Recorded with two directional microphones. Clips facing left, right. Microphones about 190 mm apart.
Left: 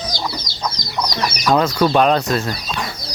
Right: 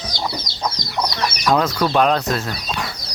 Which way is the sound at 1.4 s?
Centre (ahead or behind).